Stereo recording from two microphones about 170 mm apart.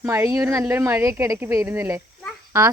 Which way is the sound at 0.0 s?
15° right (ahead or behind).